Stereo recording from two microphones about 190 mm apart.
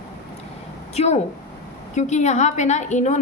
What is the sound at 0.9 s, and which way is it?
A woman's voice, 35° left (ahead or behind).